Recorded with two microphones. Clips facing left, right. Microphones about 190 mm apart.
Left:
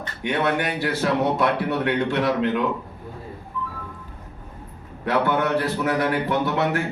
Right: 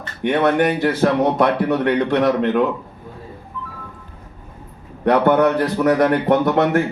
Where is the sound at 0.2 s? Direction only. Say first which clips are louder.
Right 7 dB; 55° right (ahead or behind).